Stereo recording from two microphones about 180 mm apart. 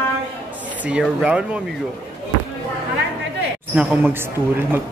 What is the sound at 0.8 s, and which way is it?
Speech, 5° right (ahead or behind).